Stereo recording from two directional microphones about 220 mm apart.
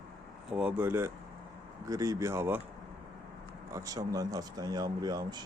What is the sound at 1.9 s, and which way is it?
Speech, 15° right (ahead or behind).